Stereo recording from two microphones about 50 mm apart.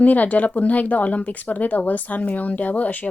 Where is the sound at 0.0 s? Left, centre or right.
Left.